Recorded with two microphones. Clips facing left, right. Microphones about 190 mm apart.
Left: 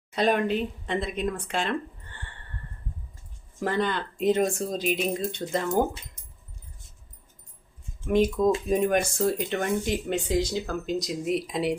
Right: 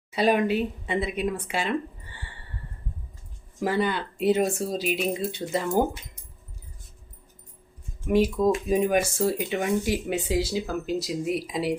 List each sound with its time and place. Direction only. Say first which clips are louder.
0.1 s speech: right 2 dB; 5° right (ahead or behind)
3.6 s speech: right 1 dB; 10° right (ahead or behind)
8.0 s speech: even; 5° right (ahead or behind)